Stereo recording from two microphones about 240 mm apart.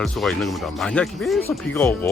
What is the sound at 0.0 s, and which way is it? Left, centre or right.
Speech, centre.